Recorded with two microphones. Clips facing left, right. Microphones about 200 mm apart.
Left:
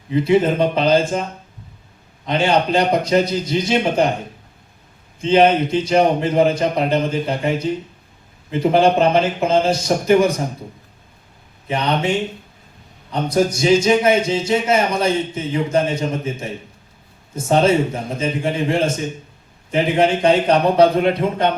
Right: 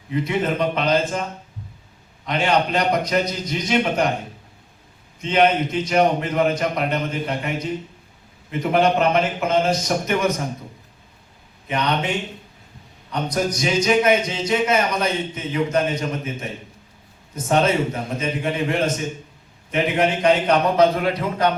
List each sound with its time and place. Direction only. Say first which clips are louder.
0.1 s speech: left 7 dB; 30° left (ahead or behind)
2.2 s a man's voice: left 3 dB; 30° left (ahead or behind)
5.2 s speech: left 4 dB; 30° left (ahead or behind)
11.7 s a man's voice: left 3 dB; 30° left (ahead or behind)